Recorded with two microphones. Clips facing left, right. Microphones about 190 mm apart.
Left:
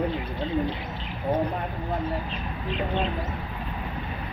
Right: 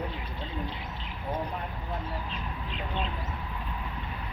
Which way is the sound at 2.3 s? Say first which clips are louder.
Left 6 dB; 80° left.